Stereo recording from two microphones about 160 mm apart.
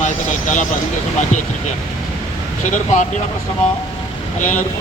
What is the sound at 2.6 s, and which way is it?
Speech, 50° left (ahead or behind).